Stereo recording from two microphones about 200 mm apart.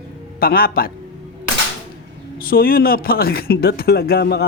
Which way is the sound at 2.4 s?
45° left (ahead or behind).